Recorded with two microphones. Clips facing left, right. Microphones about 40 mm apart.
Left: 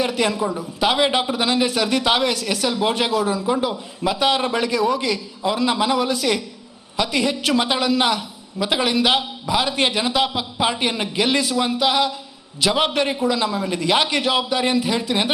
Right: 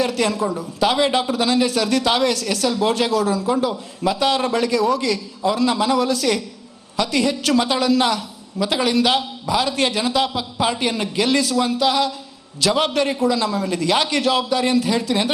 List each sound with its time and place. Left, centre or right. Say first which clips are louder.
0.0 s a woman's voice: right 1 dB; left